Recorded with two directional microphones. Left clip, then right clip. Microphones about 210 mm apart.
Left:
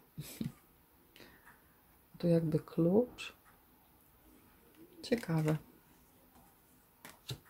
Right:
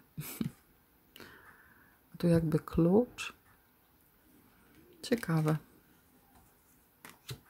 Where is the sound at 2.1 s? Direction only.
30° right (ahead or behind).